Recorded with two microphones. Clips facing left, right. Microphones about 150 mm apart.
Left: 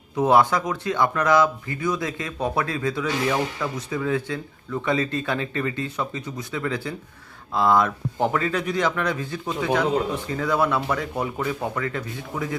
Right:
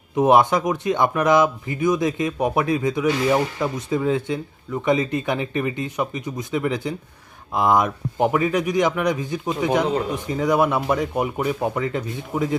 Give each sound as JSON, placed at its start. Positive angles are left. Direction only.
{"t": 0.2, "sound": "a man's voice", "side_deg": -20}